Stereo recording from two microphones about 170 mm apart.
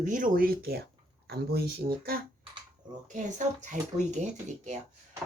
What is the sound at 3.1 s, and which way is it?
Speech, 45° right (ahead or behind).